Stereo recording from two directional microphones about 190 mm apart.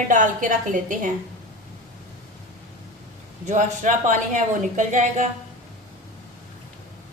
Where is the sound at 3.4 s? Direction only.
40° right (ahead or behind).